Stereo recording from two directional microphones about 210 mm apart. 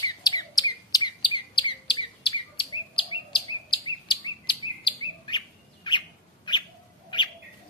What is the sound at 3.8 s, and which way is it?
Chirp, 20° left (ahead or behind).